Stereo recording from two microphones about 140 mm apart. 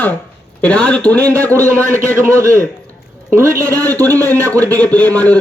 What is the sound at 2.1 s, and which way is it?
A man's voice, 20° right (ahead or behind).